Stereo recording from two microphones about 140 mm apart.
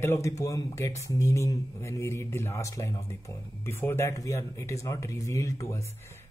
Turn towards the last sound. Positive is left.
turn(degrees=20)  # may be behind; listen again after turning